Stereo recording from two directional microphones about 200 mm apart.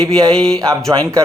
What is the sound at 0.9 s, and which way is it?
Speech, 20° right (ahead or behind).